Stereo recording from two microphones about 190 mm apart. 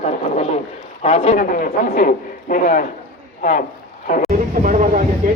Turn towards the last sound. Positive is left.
turn(degrees=-45)  # may be behind; listen again after turning